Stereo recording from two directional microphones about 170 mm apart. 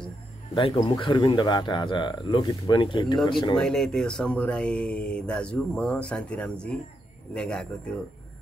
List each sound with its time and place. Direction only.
0.6 s speech: 30° left (ahead or behind)
3.5 s speech: 5° left (ahead or behind)